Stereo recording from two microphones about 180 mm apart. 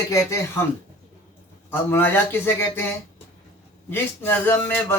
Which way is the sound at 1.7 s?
10° left (ahead or behind).